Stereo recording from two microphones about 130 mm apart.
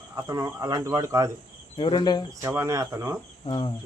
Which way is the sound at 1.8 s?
35° left (ahead or behind).